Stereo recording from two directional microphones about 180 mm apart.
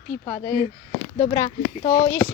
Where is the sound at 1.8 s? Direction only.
35° left (ahead or behind).